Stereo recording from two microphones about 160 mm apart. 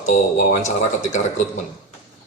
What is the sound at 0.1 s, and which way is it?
Speech, 50° left (ahead or behind).